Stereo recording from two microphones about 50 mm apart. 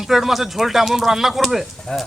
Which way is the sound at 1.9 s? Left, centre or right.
Left.